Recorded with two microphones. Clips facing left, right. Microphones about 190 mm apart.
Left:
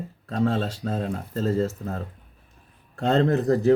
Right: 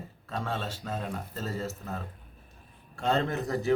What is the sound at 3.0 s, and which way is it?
Speech, 35° left (ahead or behind).